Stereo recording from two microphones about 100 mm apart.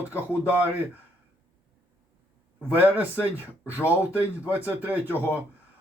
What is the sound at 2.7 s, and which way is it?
Speech, 15° right (ahead or behind).